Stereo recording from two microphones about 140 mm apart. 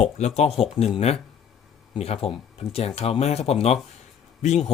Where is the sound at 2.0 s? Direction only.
45° left (ahead or behind).